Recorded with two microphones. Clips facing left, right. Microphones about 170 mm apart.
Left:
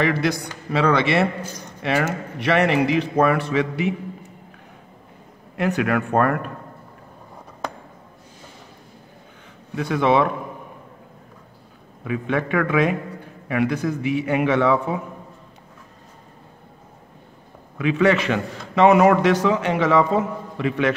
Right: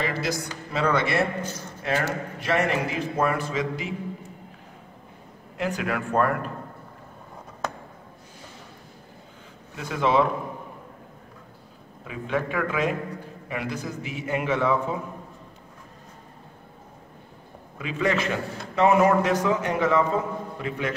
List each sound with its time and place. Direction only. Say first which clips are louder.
0.0 s a man's voice: left 6 dB; 60° left (ahead or behind)
5.6 s a man's voice: left 6 dB; 65° left (ahead or behind)
9.8 s a man's voice: left 4 dB; 65° left (ahead or behind)
12.1 s a man's voice: left 5 dB; 65° left (ahead or behind)
17.7 s a man's voice: left 7 dB; 75° left (ahead or behind)